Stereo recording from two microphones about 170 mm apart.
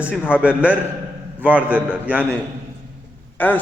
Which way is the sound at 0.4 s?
5° right (ahead or behind).